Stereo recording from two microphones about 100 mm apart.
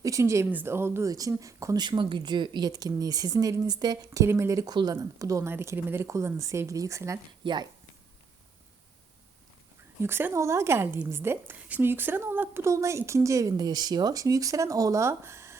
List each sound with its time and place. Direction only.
0.0 s a woman's voice: 30° right (ahead or behind)
1.1 s speech: 35° right (ahead or behind)
1.8 s speech: 55° right (ahead or behind)
4.2 s speech: 30° right (ahead or behind)
7.4 s speech: 50° right (ahead or behind)
10.0 s a woman's voice: 20° right (ahead or behind)